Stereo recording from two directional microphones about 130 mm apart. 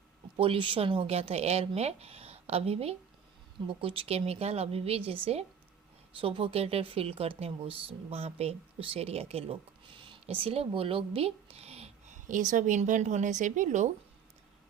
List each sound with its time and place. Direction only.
0.3 s speech: 40° right (ahead or behind); by 13.9 s 70° right (ahead or behind)